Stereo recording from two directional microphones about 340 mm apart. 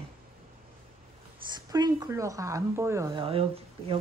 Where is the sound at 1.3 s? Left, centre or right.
Centre.